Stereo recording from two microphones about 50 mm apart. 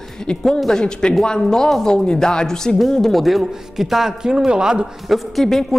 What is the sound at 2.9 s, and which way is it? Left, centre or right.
A man's voice, centre.